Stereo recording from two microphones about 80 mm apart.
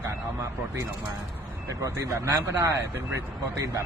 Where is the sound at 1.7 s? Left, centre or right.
Right.